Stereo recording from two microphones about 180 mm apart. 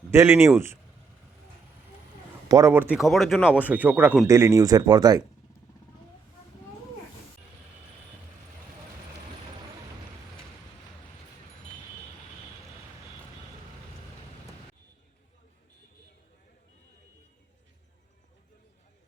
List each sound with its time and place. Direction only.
0.1 s speech: 15° right (ahead or behind)
2.5 s speech: 20° right (ahead or behind)